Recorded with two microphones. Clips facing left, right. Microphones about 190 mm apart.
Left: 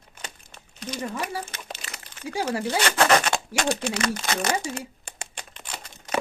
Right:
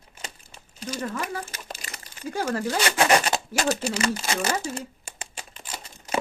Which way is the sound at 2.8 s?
10° right (ahead or behind).